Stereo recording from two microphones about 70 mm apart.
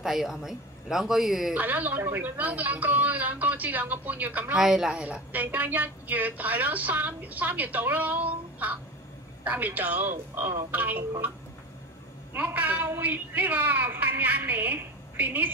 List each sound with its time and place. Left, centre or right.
0.0 s speech: centre
1.5 s a woman's voice: right
4.6 s a woman's voice: centre; by 11.3 s right
12.4 s a woman's voice: right